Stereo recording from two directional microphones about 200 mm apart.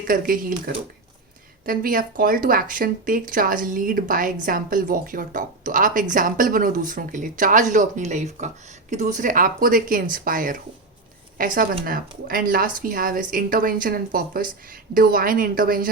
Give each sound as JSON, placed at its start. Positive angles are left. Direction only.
{"t": 0.0, "sound": "speech", "side_deg": -45}
{"t": 1.6, "sound": "speech", "side_deg": -45}